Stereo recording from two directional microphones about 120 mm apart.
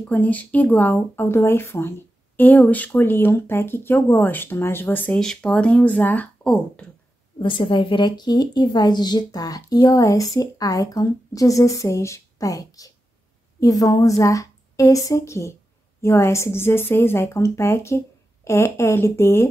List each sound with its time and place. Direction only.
0.0 s speech: 15° left (ahead or behind)
7.3 s a woman's voice: 45° left (ahead or behind); by 19.4 s 20° left (ahead or behind)